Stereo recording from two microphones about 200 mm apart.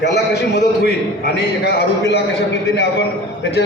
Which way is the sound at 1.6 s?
55° left (ahead or behind).